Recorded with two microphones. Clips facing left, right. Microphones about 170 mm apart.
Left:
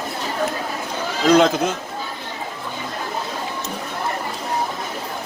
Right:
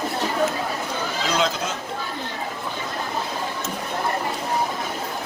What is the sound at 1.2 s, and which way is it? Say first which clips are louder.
Speech: left 10 dB; 55° left (ahead or behind).